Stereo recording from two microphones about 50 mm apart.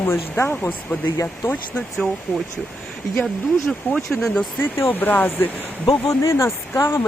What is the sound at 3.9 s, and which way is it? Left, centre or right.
Speech, centre.